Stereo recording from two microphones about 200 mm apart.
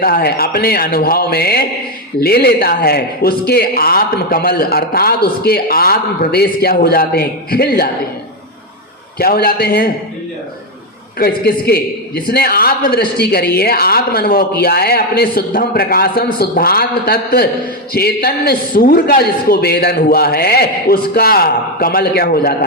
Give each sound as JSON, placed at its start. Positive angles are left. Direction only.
{"t": 0.0, "sound": "a man's voice", "side_deg": 50}
{"t": 9.1, "sound": "a man's voice", "side_deg": 50}
{"t": 11.2, "sound": "a man's voice", "side_deg": 50}